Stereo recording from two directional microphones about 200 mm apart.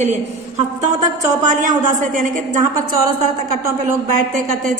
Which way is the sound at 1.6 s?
40° right (ahead or behind).